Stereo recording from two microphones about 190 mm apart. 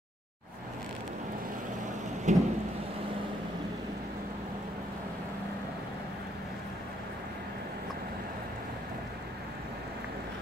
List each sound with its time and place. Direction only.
2.3 s thunder: 40° right (ahead or behind)